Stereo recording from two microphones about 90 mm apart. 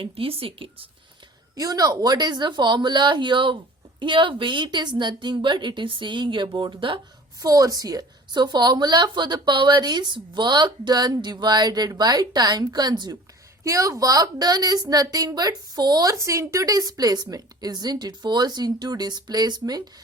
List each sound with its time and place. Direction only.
0.0 s speech: 90° right
1.5 s a woman's voice: 45° right (ahead or behind); by 7.0 s 70° right (ahead or behind)
7.3 s a woman's voice: 40° right (ahead or behind)
13.7 s a woman's voice: 35° right (ahead or behind)